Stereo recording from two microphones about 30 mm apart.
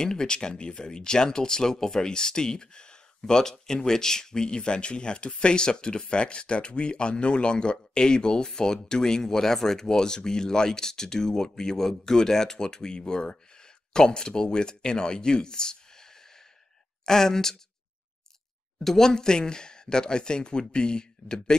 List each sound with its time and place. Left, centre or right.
0.0 s speech: left
18.9 s speech: centre